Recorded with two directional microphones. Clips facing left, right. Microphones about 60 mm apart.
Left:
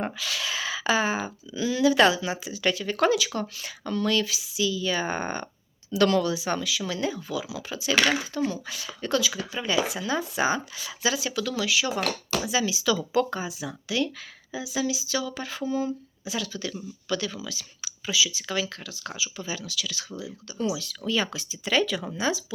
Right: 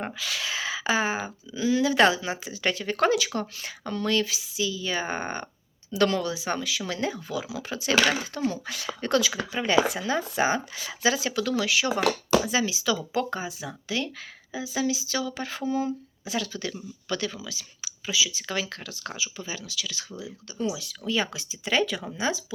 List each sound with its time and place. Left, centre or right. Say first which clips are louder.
0.0 s speech: left 1 dB; centre; by 17.3 s right
17.3 s speech: left 2 dB; right
19.4 s speech: left 2 dB; right